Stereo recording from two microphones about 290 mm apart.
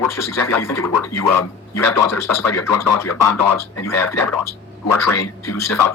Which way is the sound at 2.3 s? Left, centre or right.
Left.